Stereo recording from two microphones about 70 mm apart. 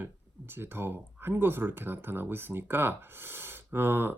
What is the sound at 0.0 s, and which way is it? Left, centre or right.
Speech, right.